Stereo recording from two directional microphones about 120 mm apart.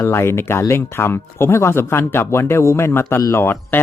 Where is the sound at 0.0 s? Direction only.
20° left (ahead or behind).